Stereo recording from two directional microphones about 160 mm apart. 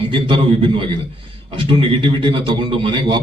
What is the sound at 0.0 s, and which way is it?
Speech, 35° right (ahead or behind).